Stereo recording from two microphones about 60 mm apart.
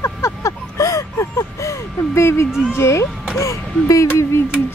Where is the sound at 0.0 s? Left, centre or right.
Left.